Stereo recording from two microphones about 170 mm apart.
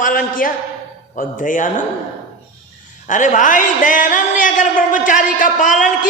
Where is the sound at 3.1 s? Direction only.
50° left (ahead or behind).